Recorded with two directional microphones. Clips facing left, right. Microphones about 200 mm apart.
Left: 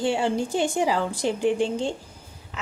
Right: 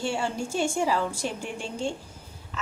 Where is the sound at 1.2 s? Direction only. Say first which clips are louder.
Left 10 dB; 90° left.